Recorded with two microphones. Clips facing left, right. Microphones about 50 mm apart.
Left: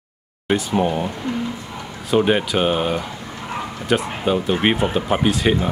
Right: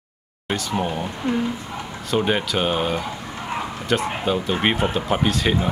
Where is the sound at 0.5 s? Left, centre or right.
Centre.